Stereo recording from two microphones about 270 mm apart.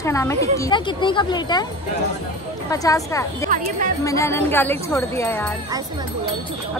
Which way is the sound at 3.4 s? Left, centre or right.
Right.